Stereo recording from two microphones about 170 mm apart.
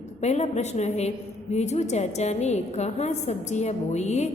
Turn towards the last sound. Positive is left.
turn(degrees=40)  # may be behind; listen again after turning